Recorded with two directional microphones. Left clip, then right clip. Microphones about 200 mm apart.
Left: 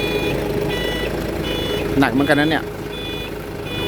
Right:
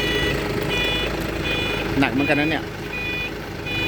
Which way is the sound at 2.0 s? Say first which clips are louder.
Left 4 dB; 15° left (ahead or behind).